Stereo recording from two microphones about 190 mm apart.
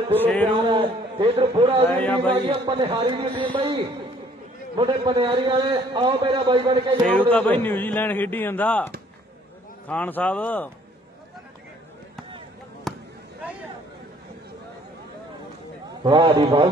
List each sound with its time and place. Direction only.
0.1 s a man's voice: 10° left (ahead or behind)
0.6 s a man's voice: 25° right (ahead or behind)
1.9 s a man's voice: 10° left (ahead or behind)
2.3 s a man's voice: 30° right (ahead or behind)
4.7 s a man's voice: 25° right (ahead or behind)
7.2 s a man's voice: 10° left (ahead or behind)
16.0 s a man's voice: 25° right (ahead or behind)